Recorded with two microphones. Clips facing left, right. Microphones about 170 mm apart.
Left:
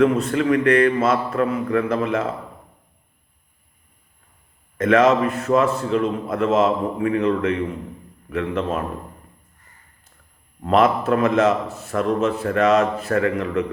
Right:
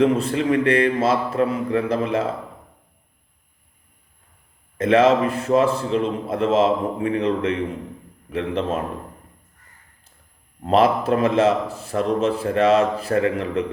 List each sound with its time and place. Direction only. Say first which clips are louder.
0.0 s a man's voice: left 1 dB; 30° right (ahead or behind)
4.8 s a man's voice: even; 30° right (ahead or behind)
10.6 s a man's voice: even; 30° right (ahead or behind)